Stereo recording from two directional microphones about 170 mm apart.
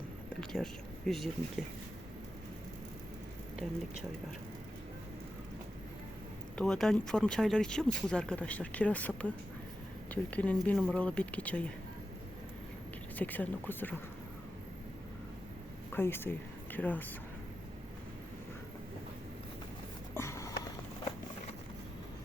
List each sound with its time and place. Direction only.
0.3 s speech: 5° left (ahead or behind)
6.6 s speech: 5° left (ahead or behind)
13.1 s speech: 10° left (ahead or behind)
15.9 s speech: 15° left (ahead or behind)
20.1 s a sound: 15° left (ahead or behind)